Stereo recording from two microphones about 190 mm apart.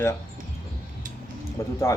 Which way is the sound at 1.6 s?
15° left (ahead or behind).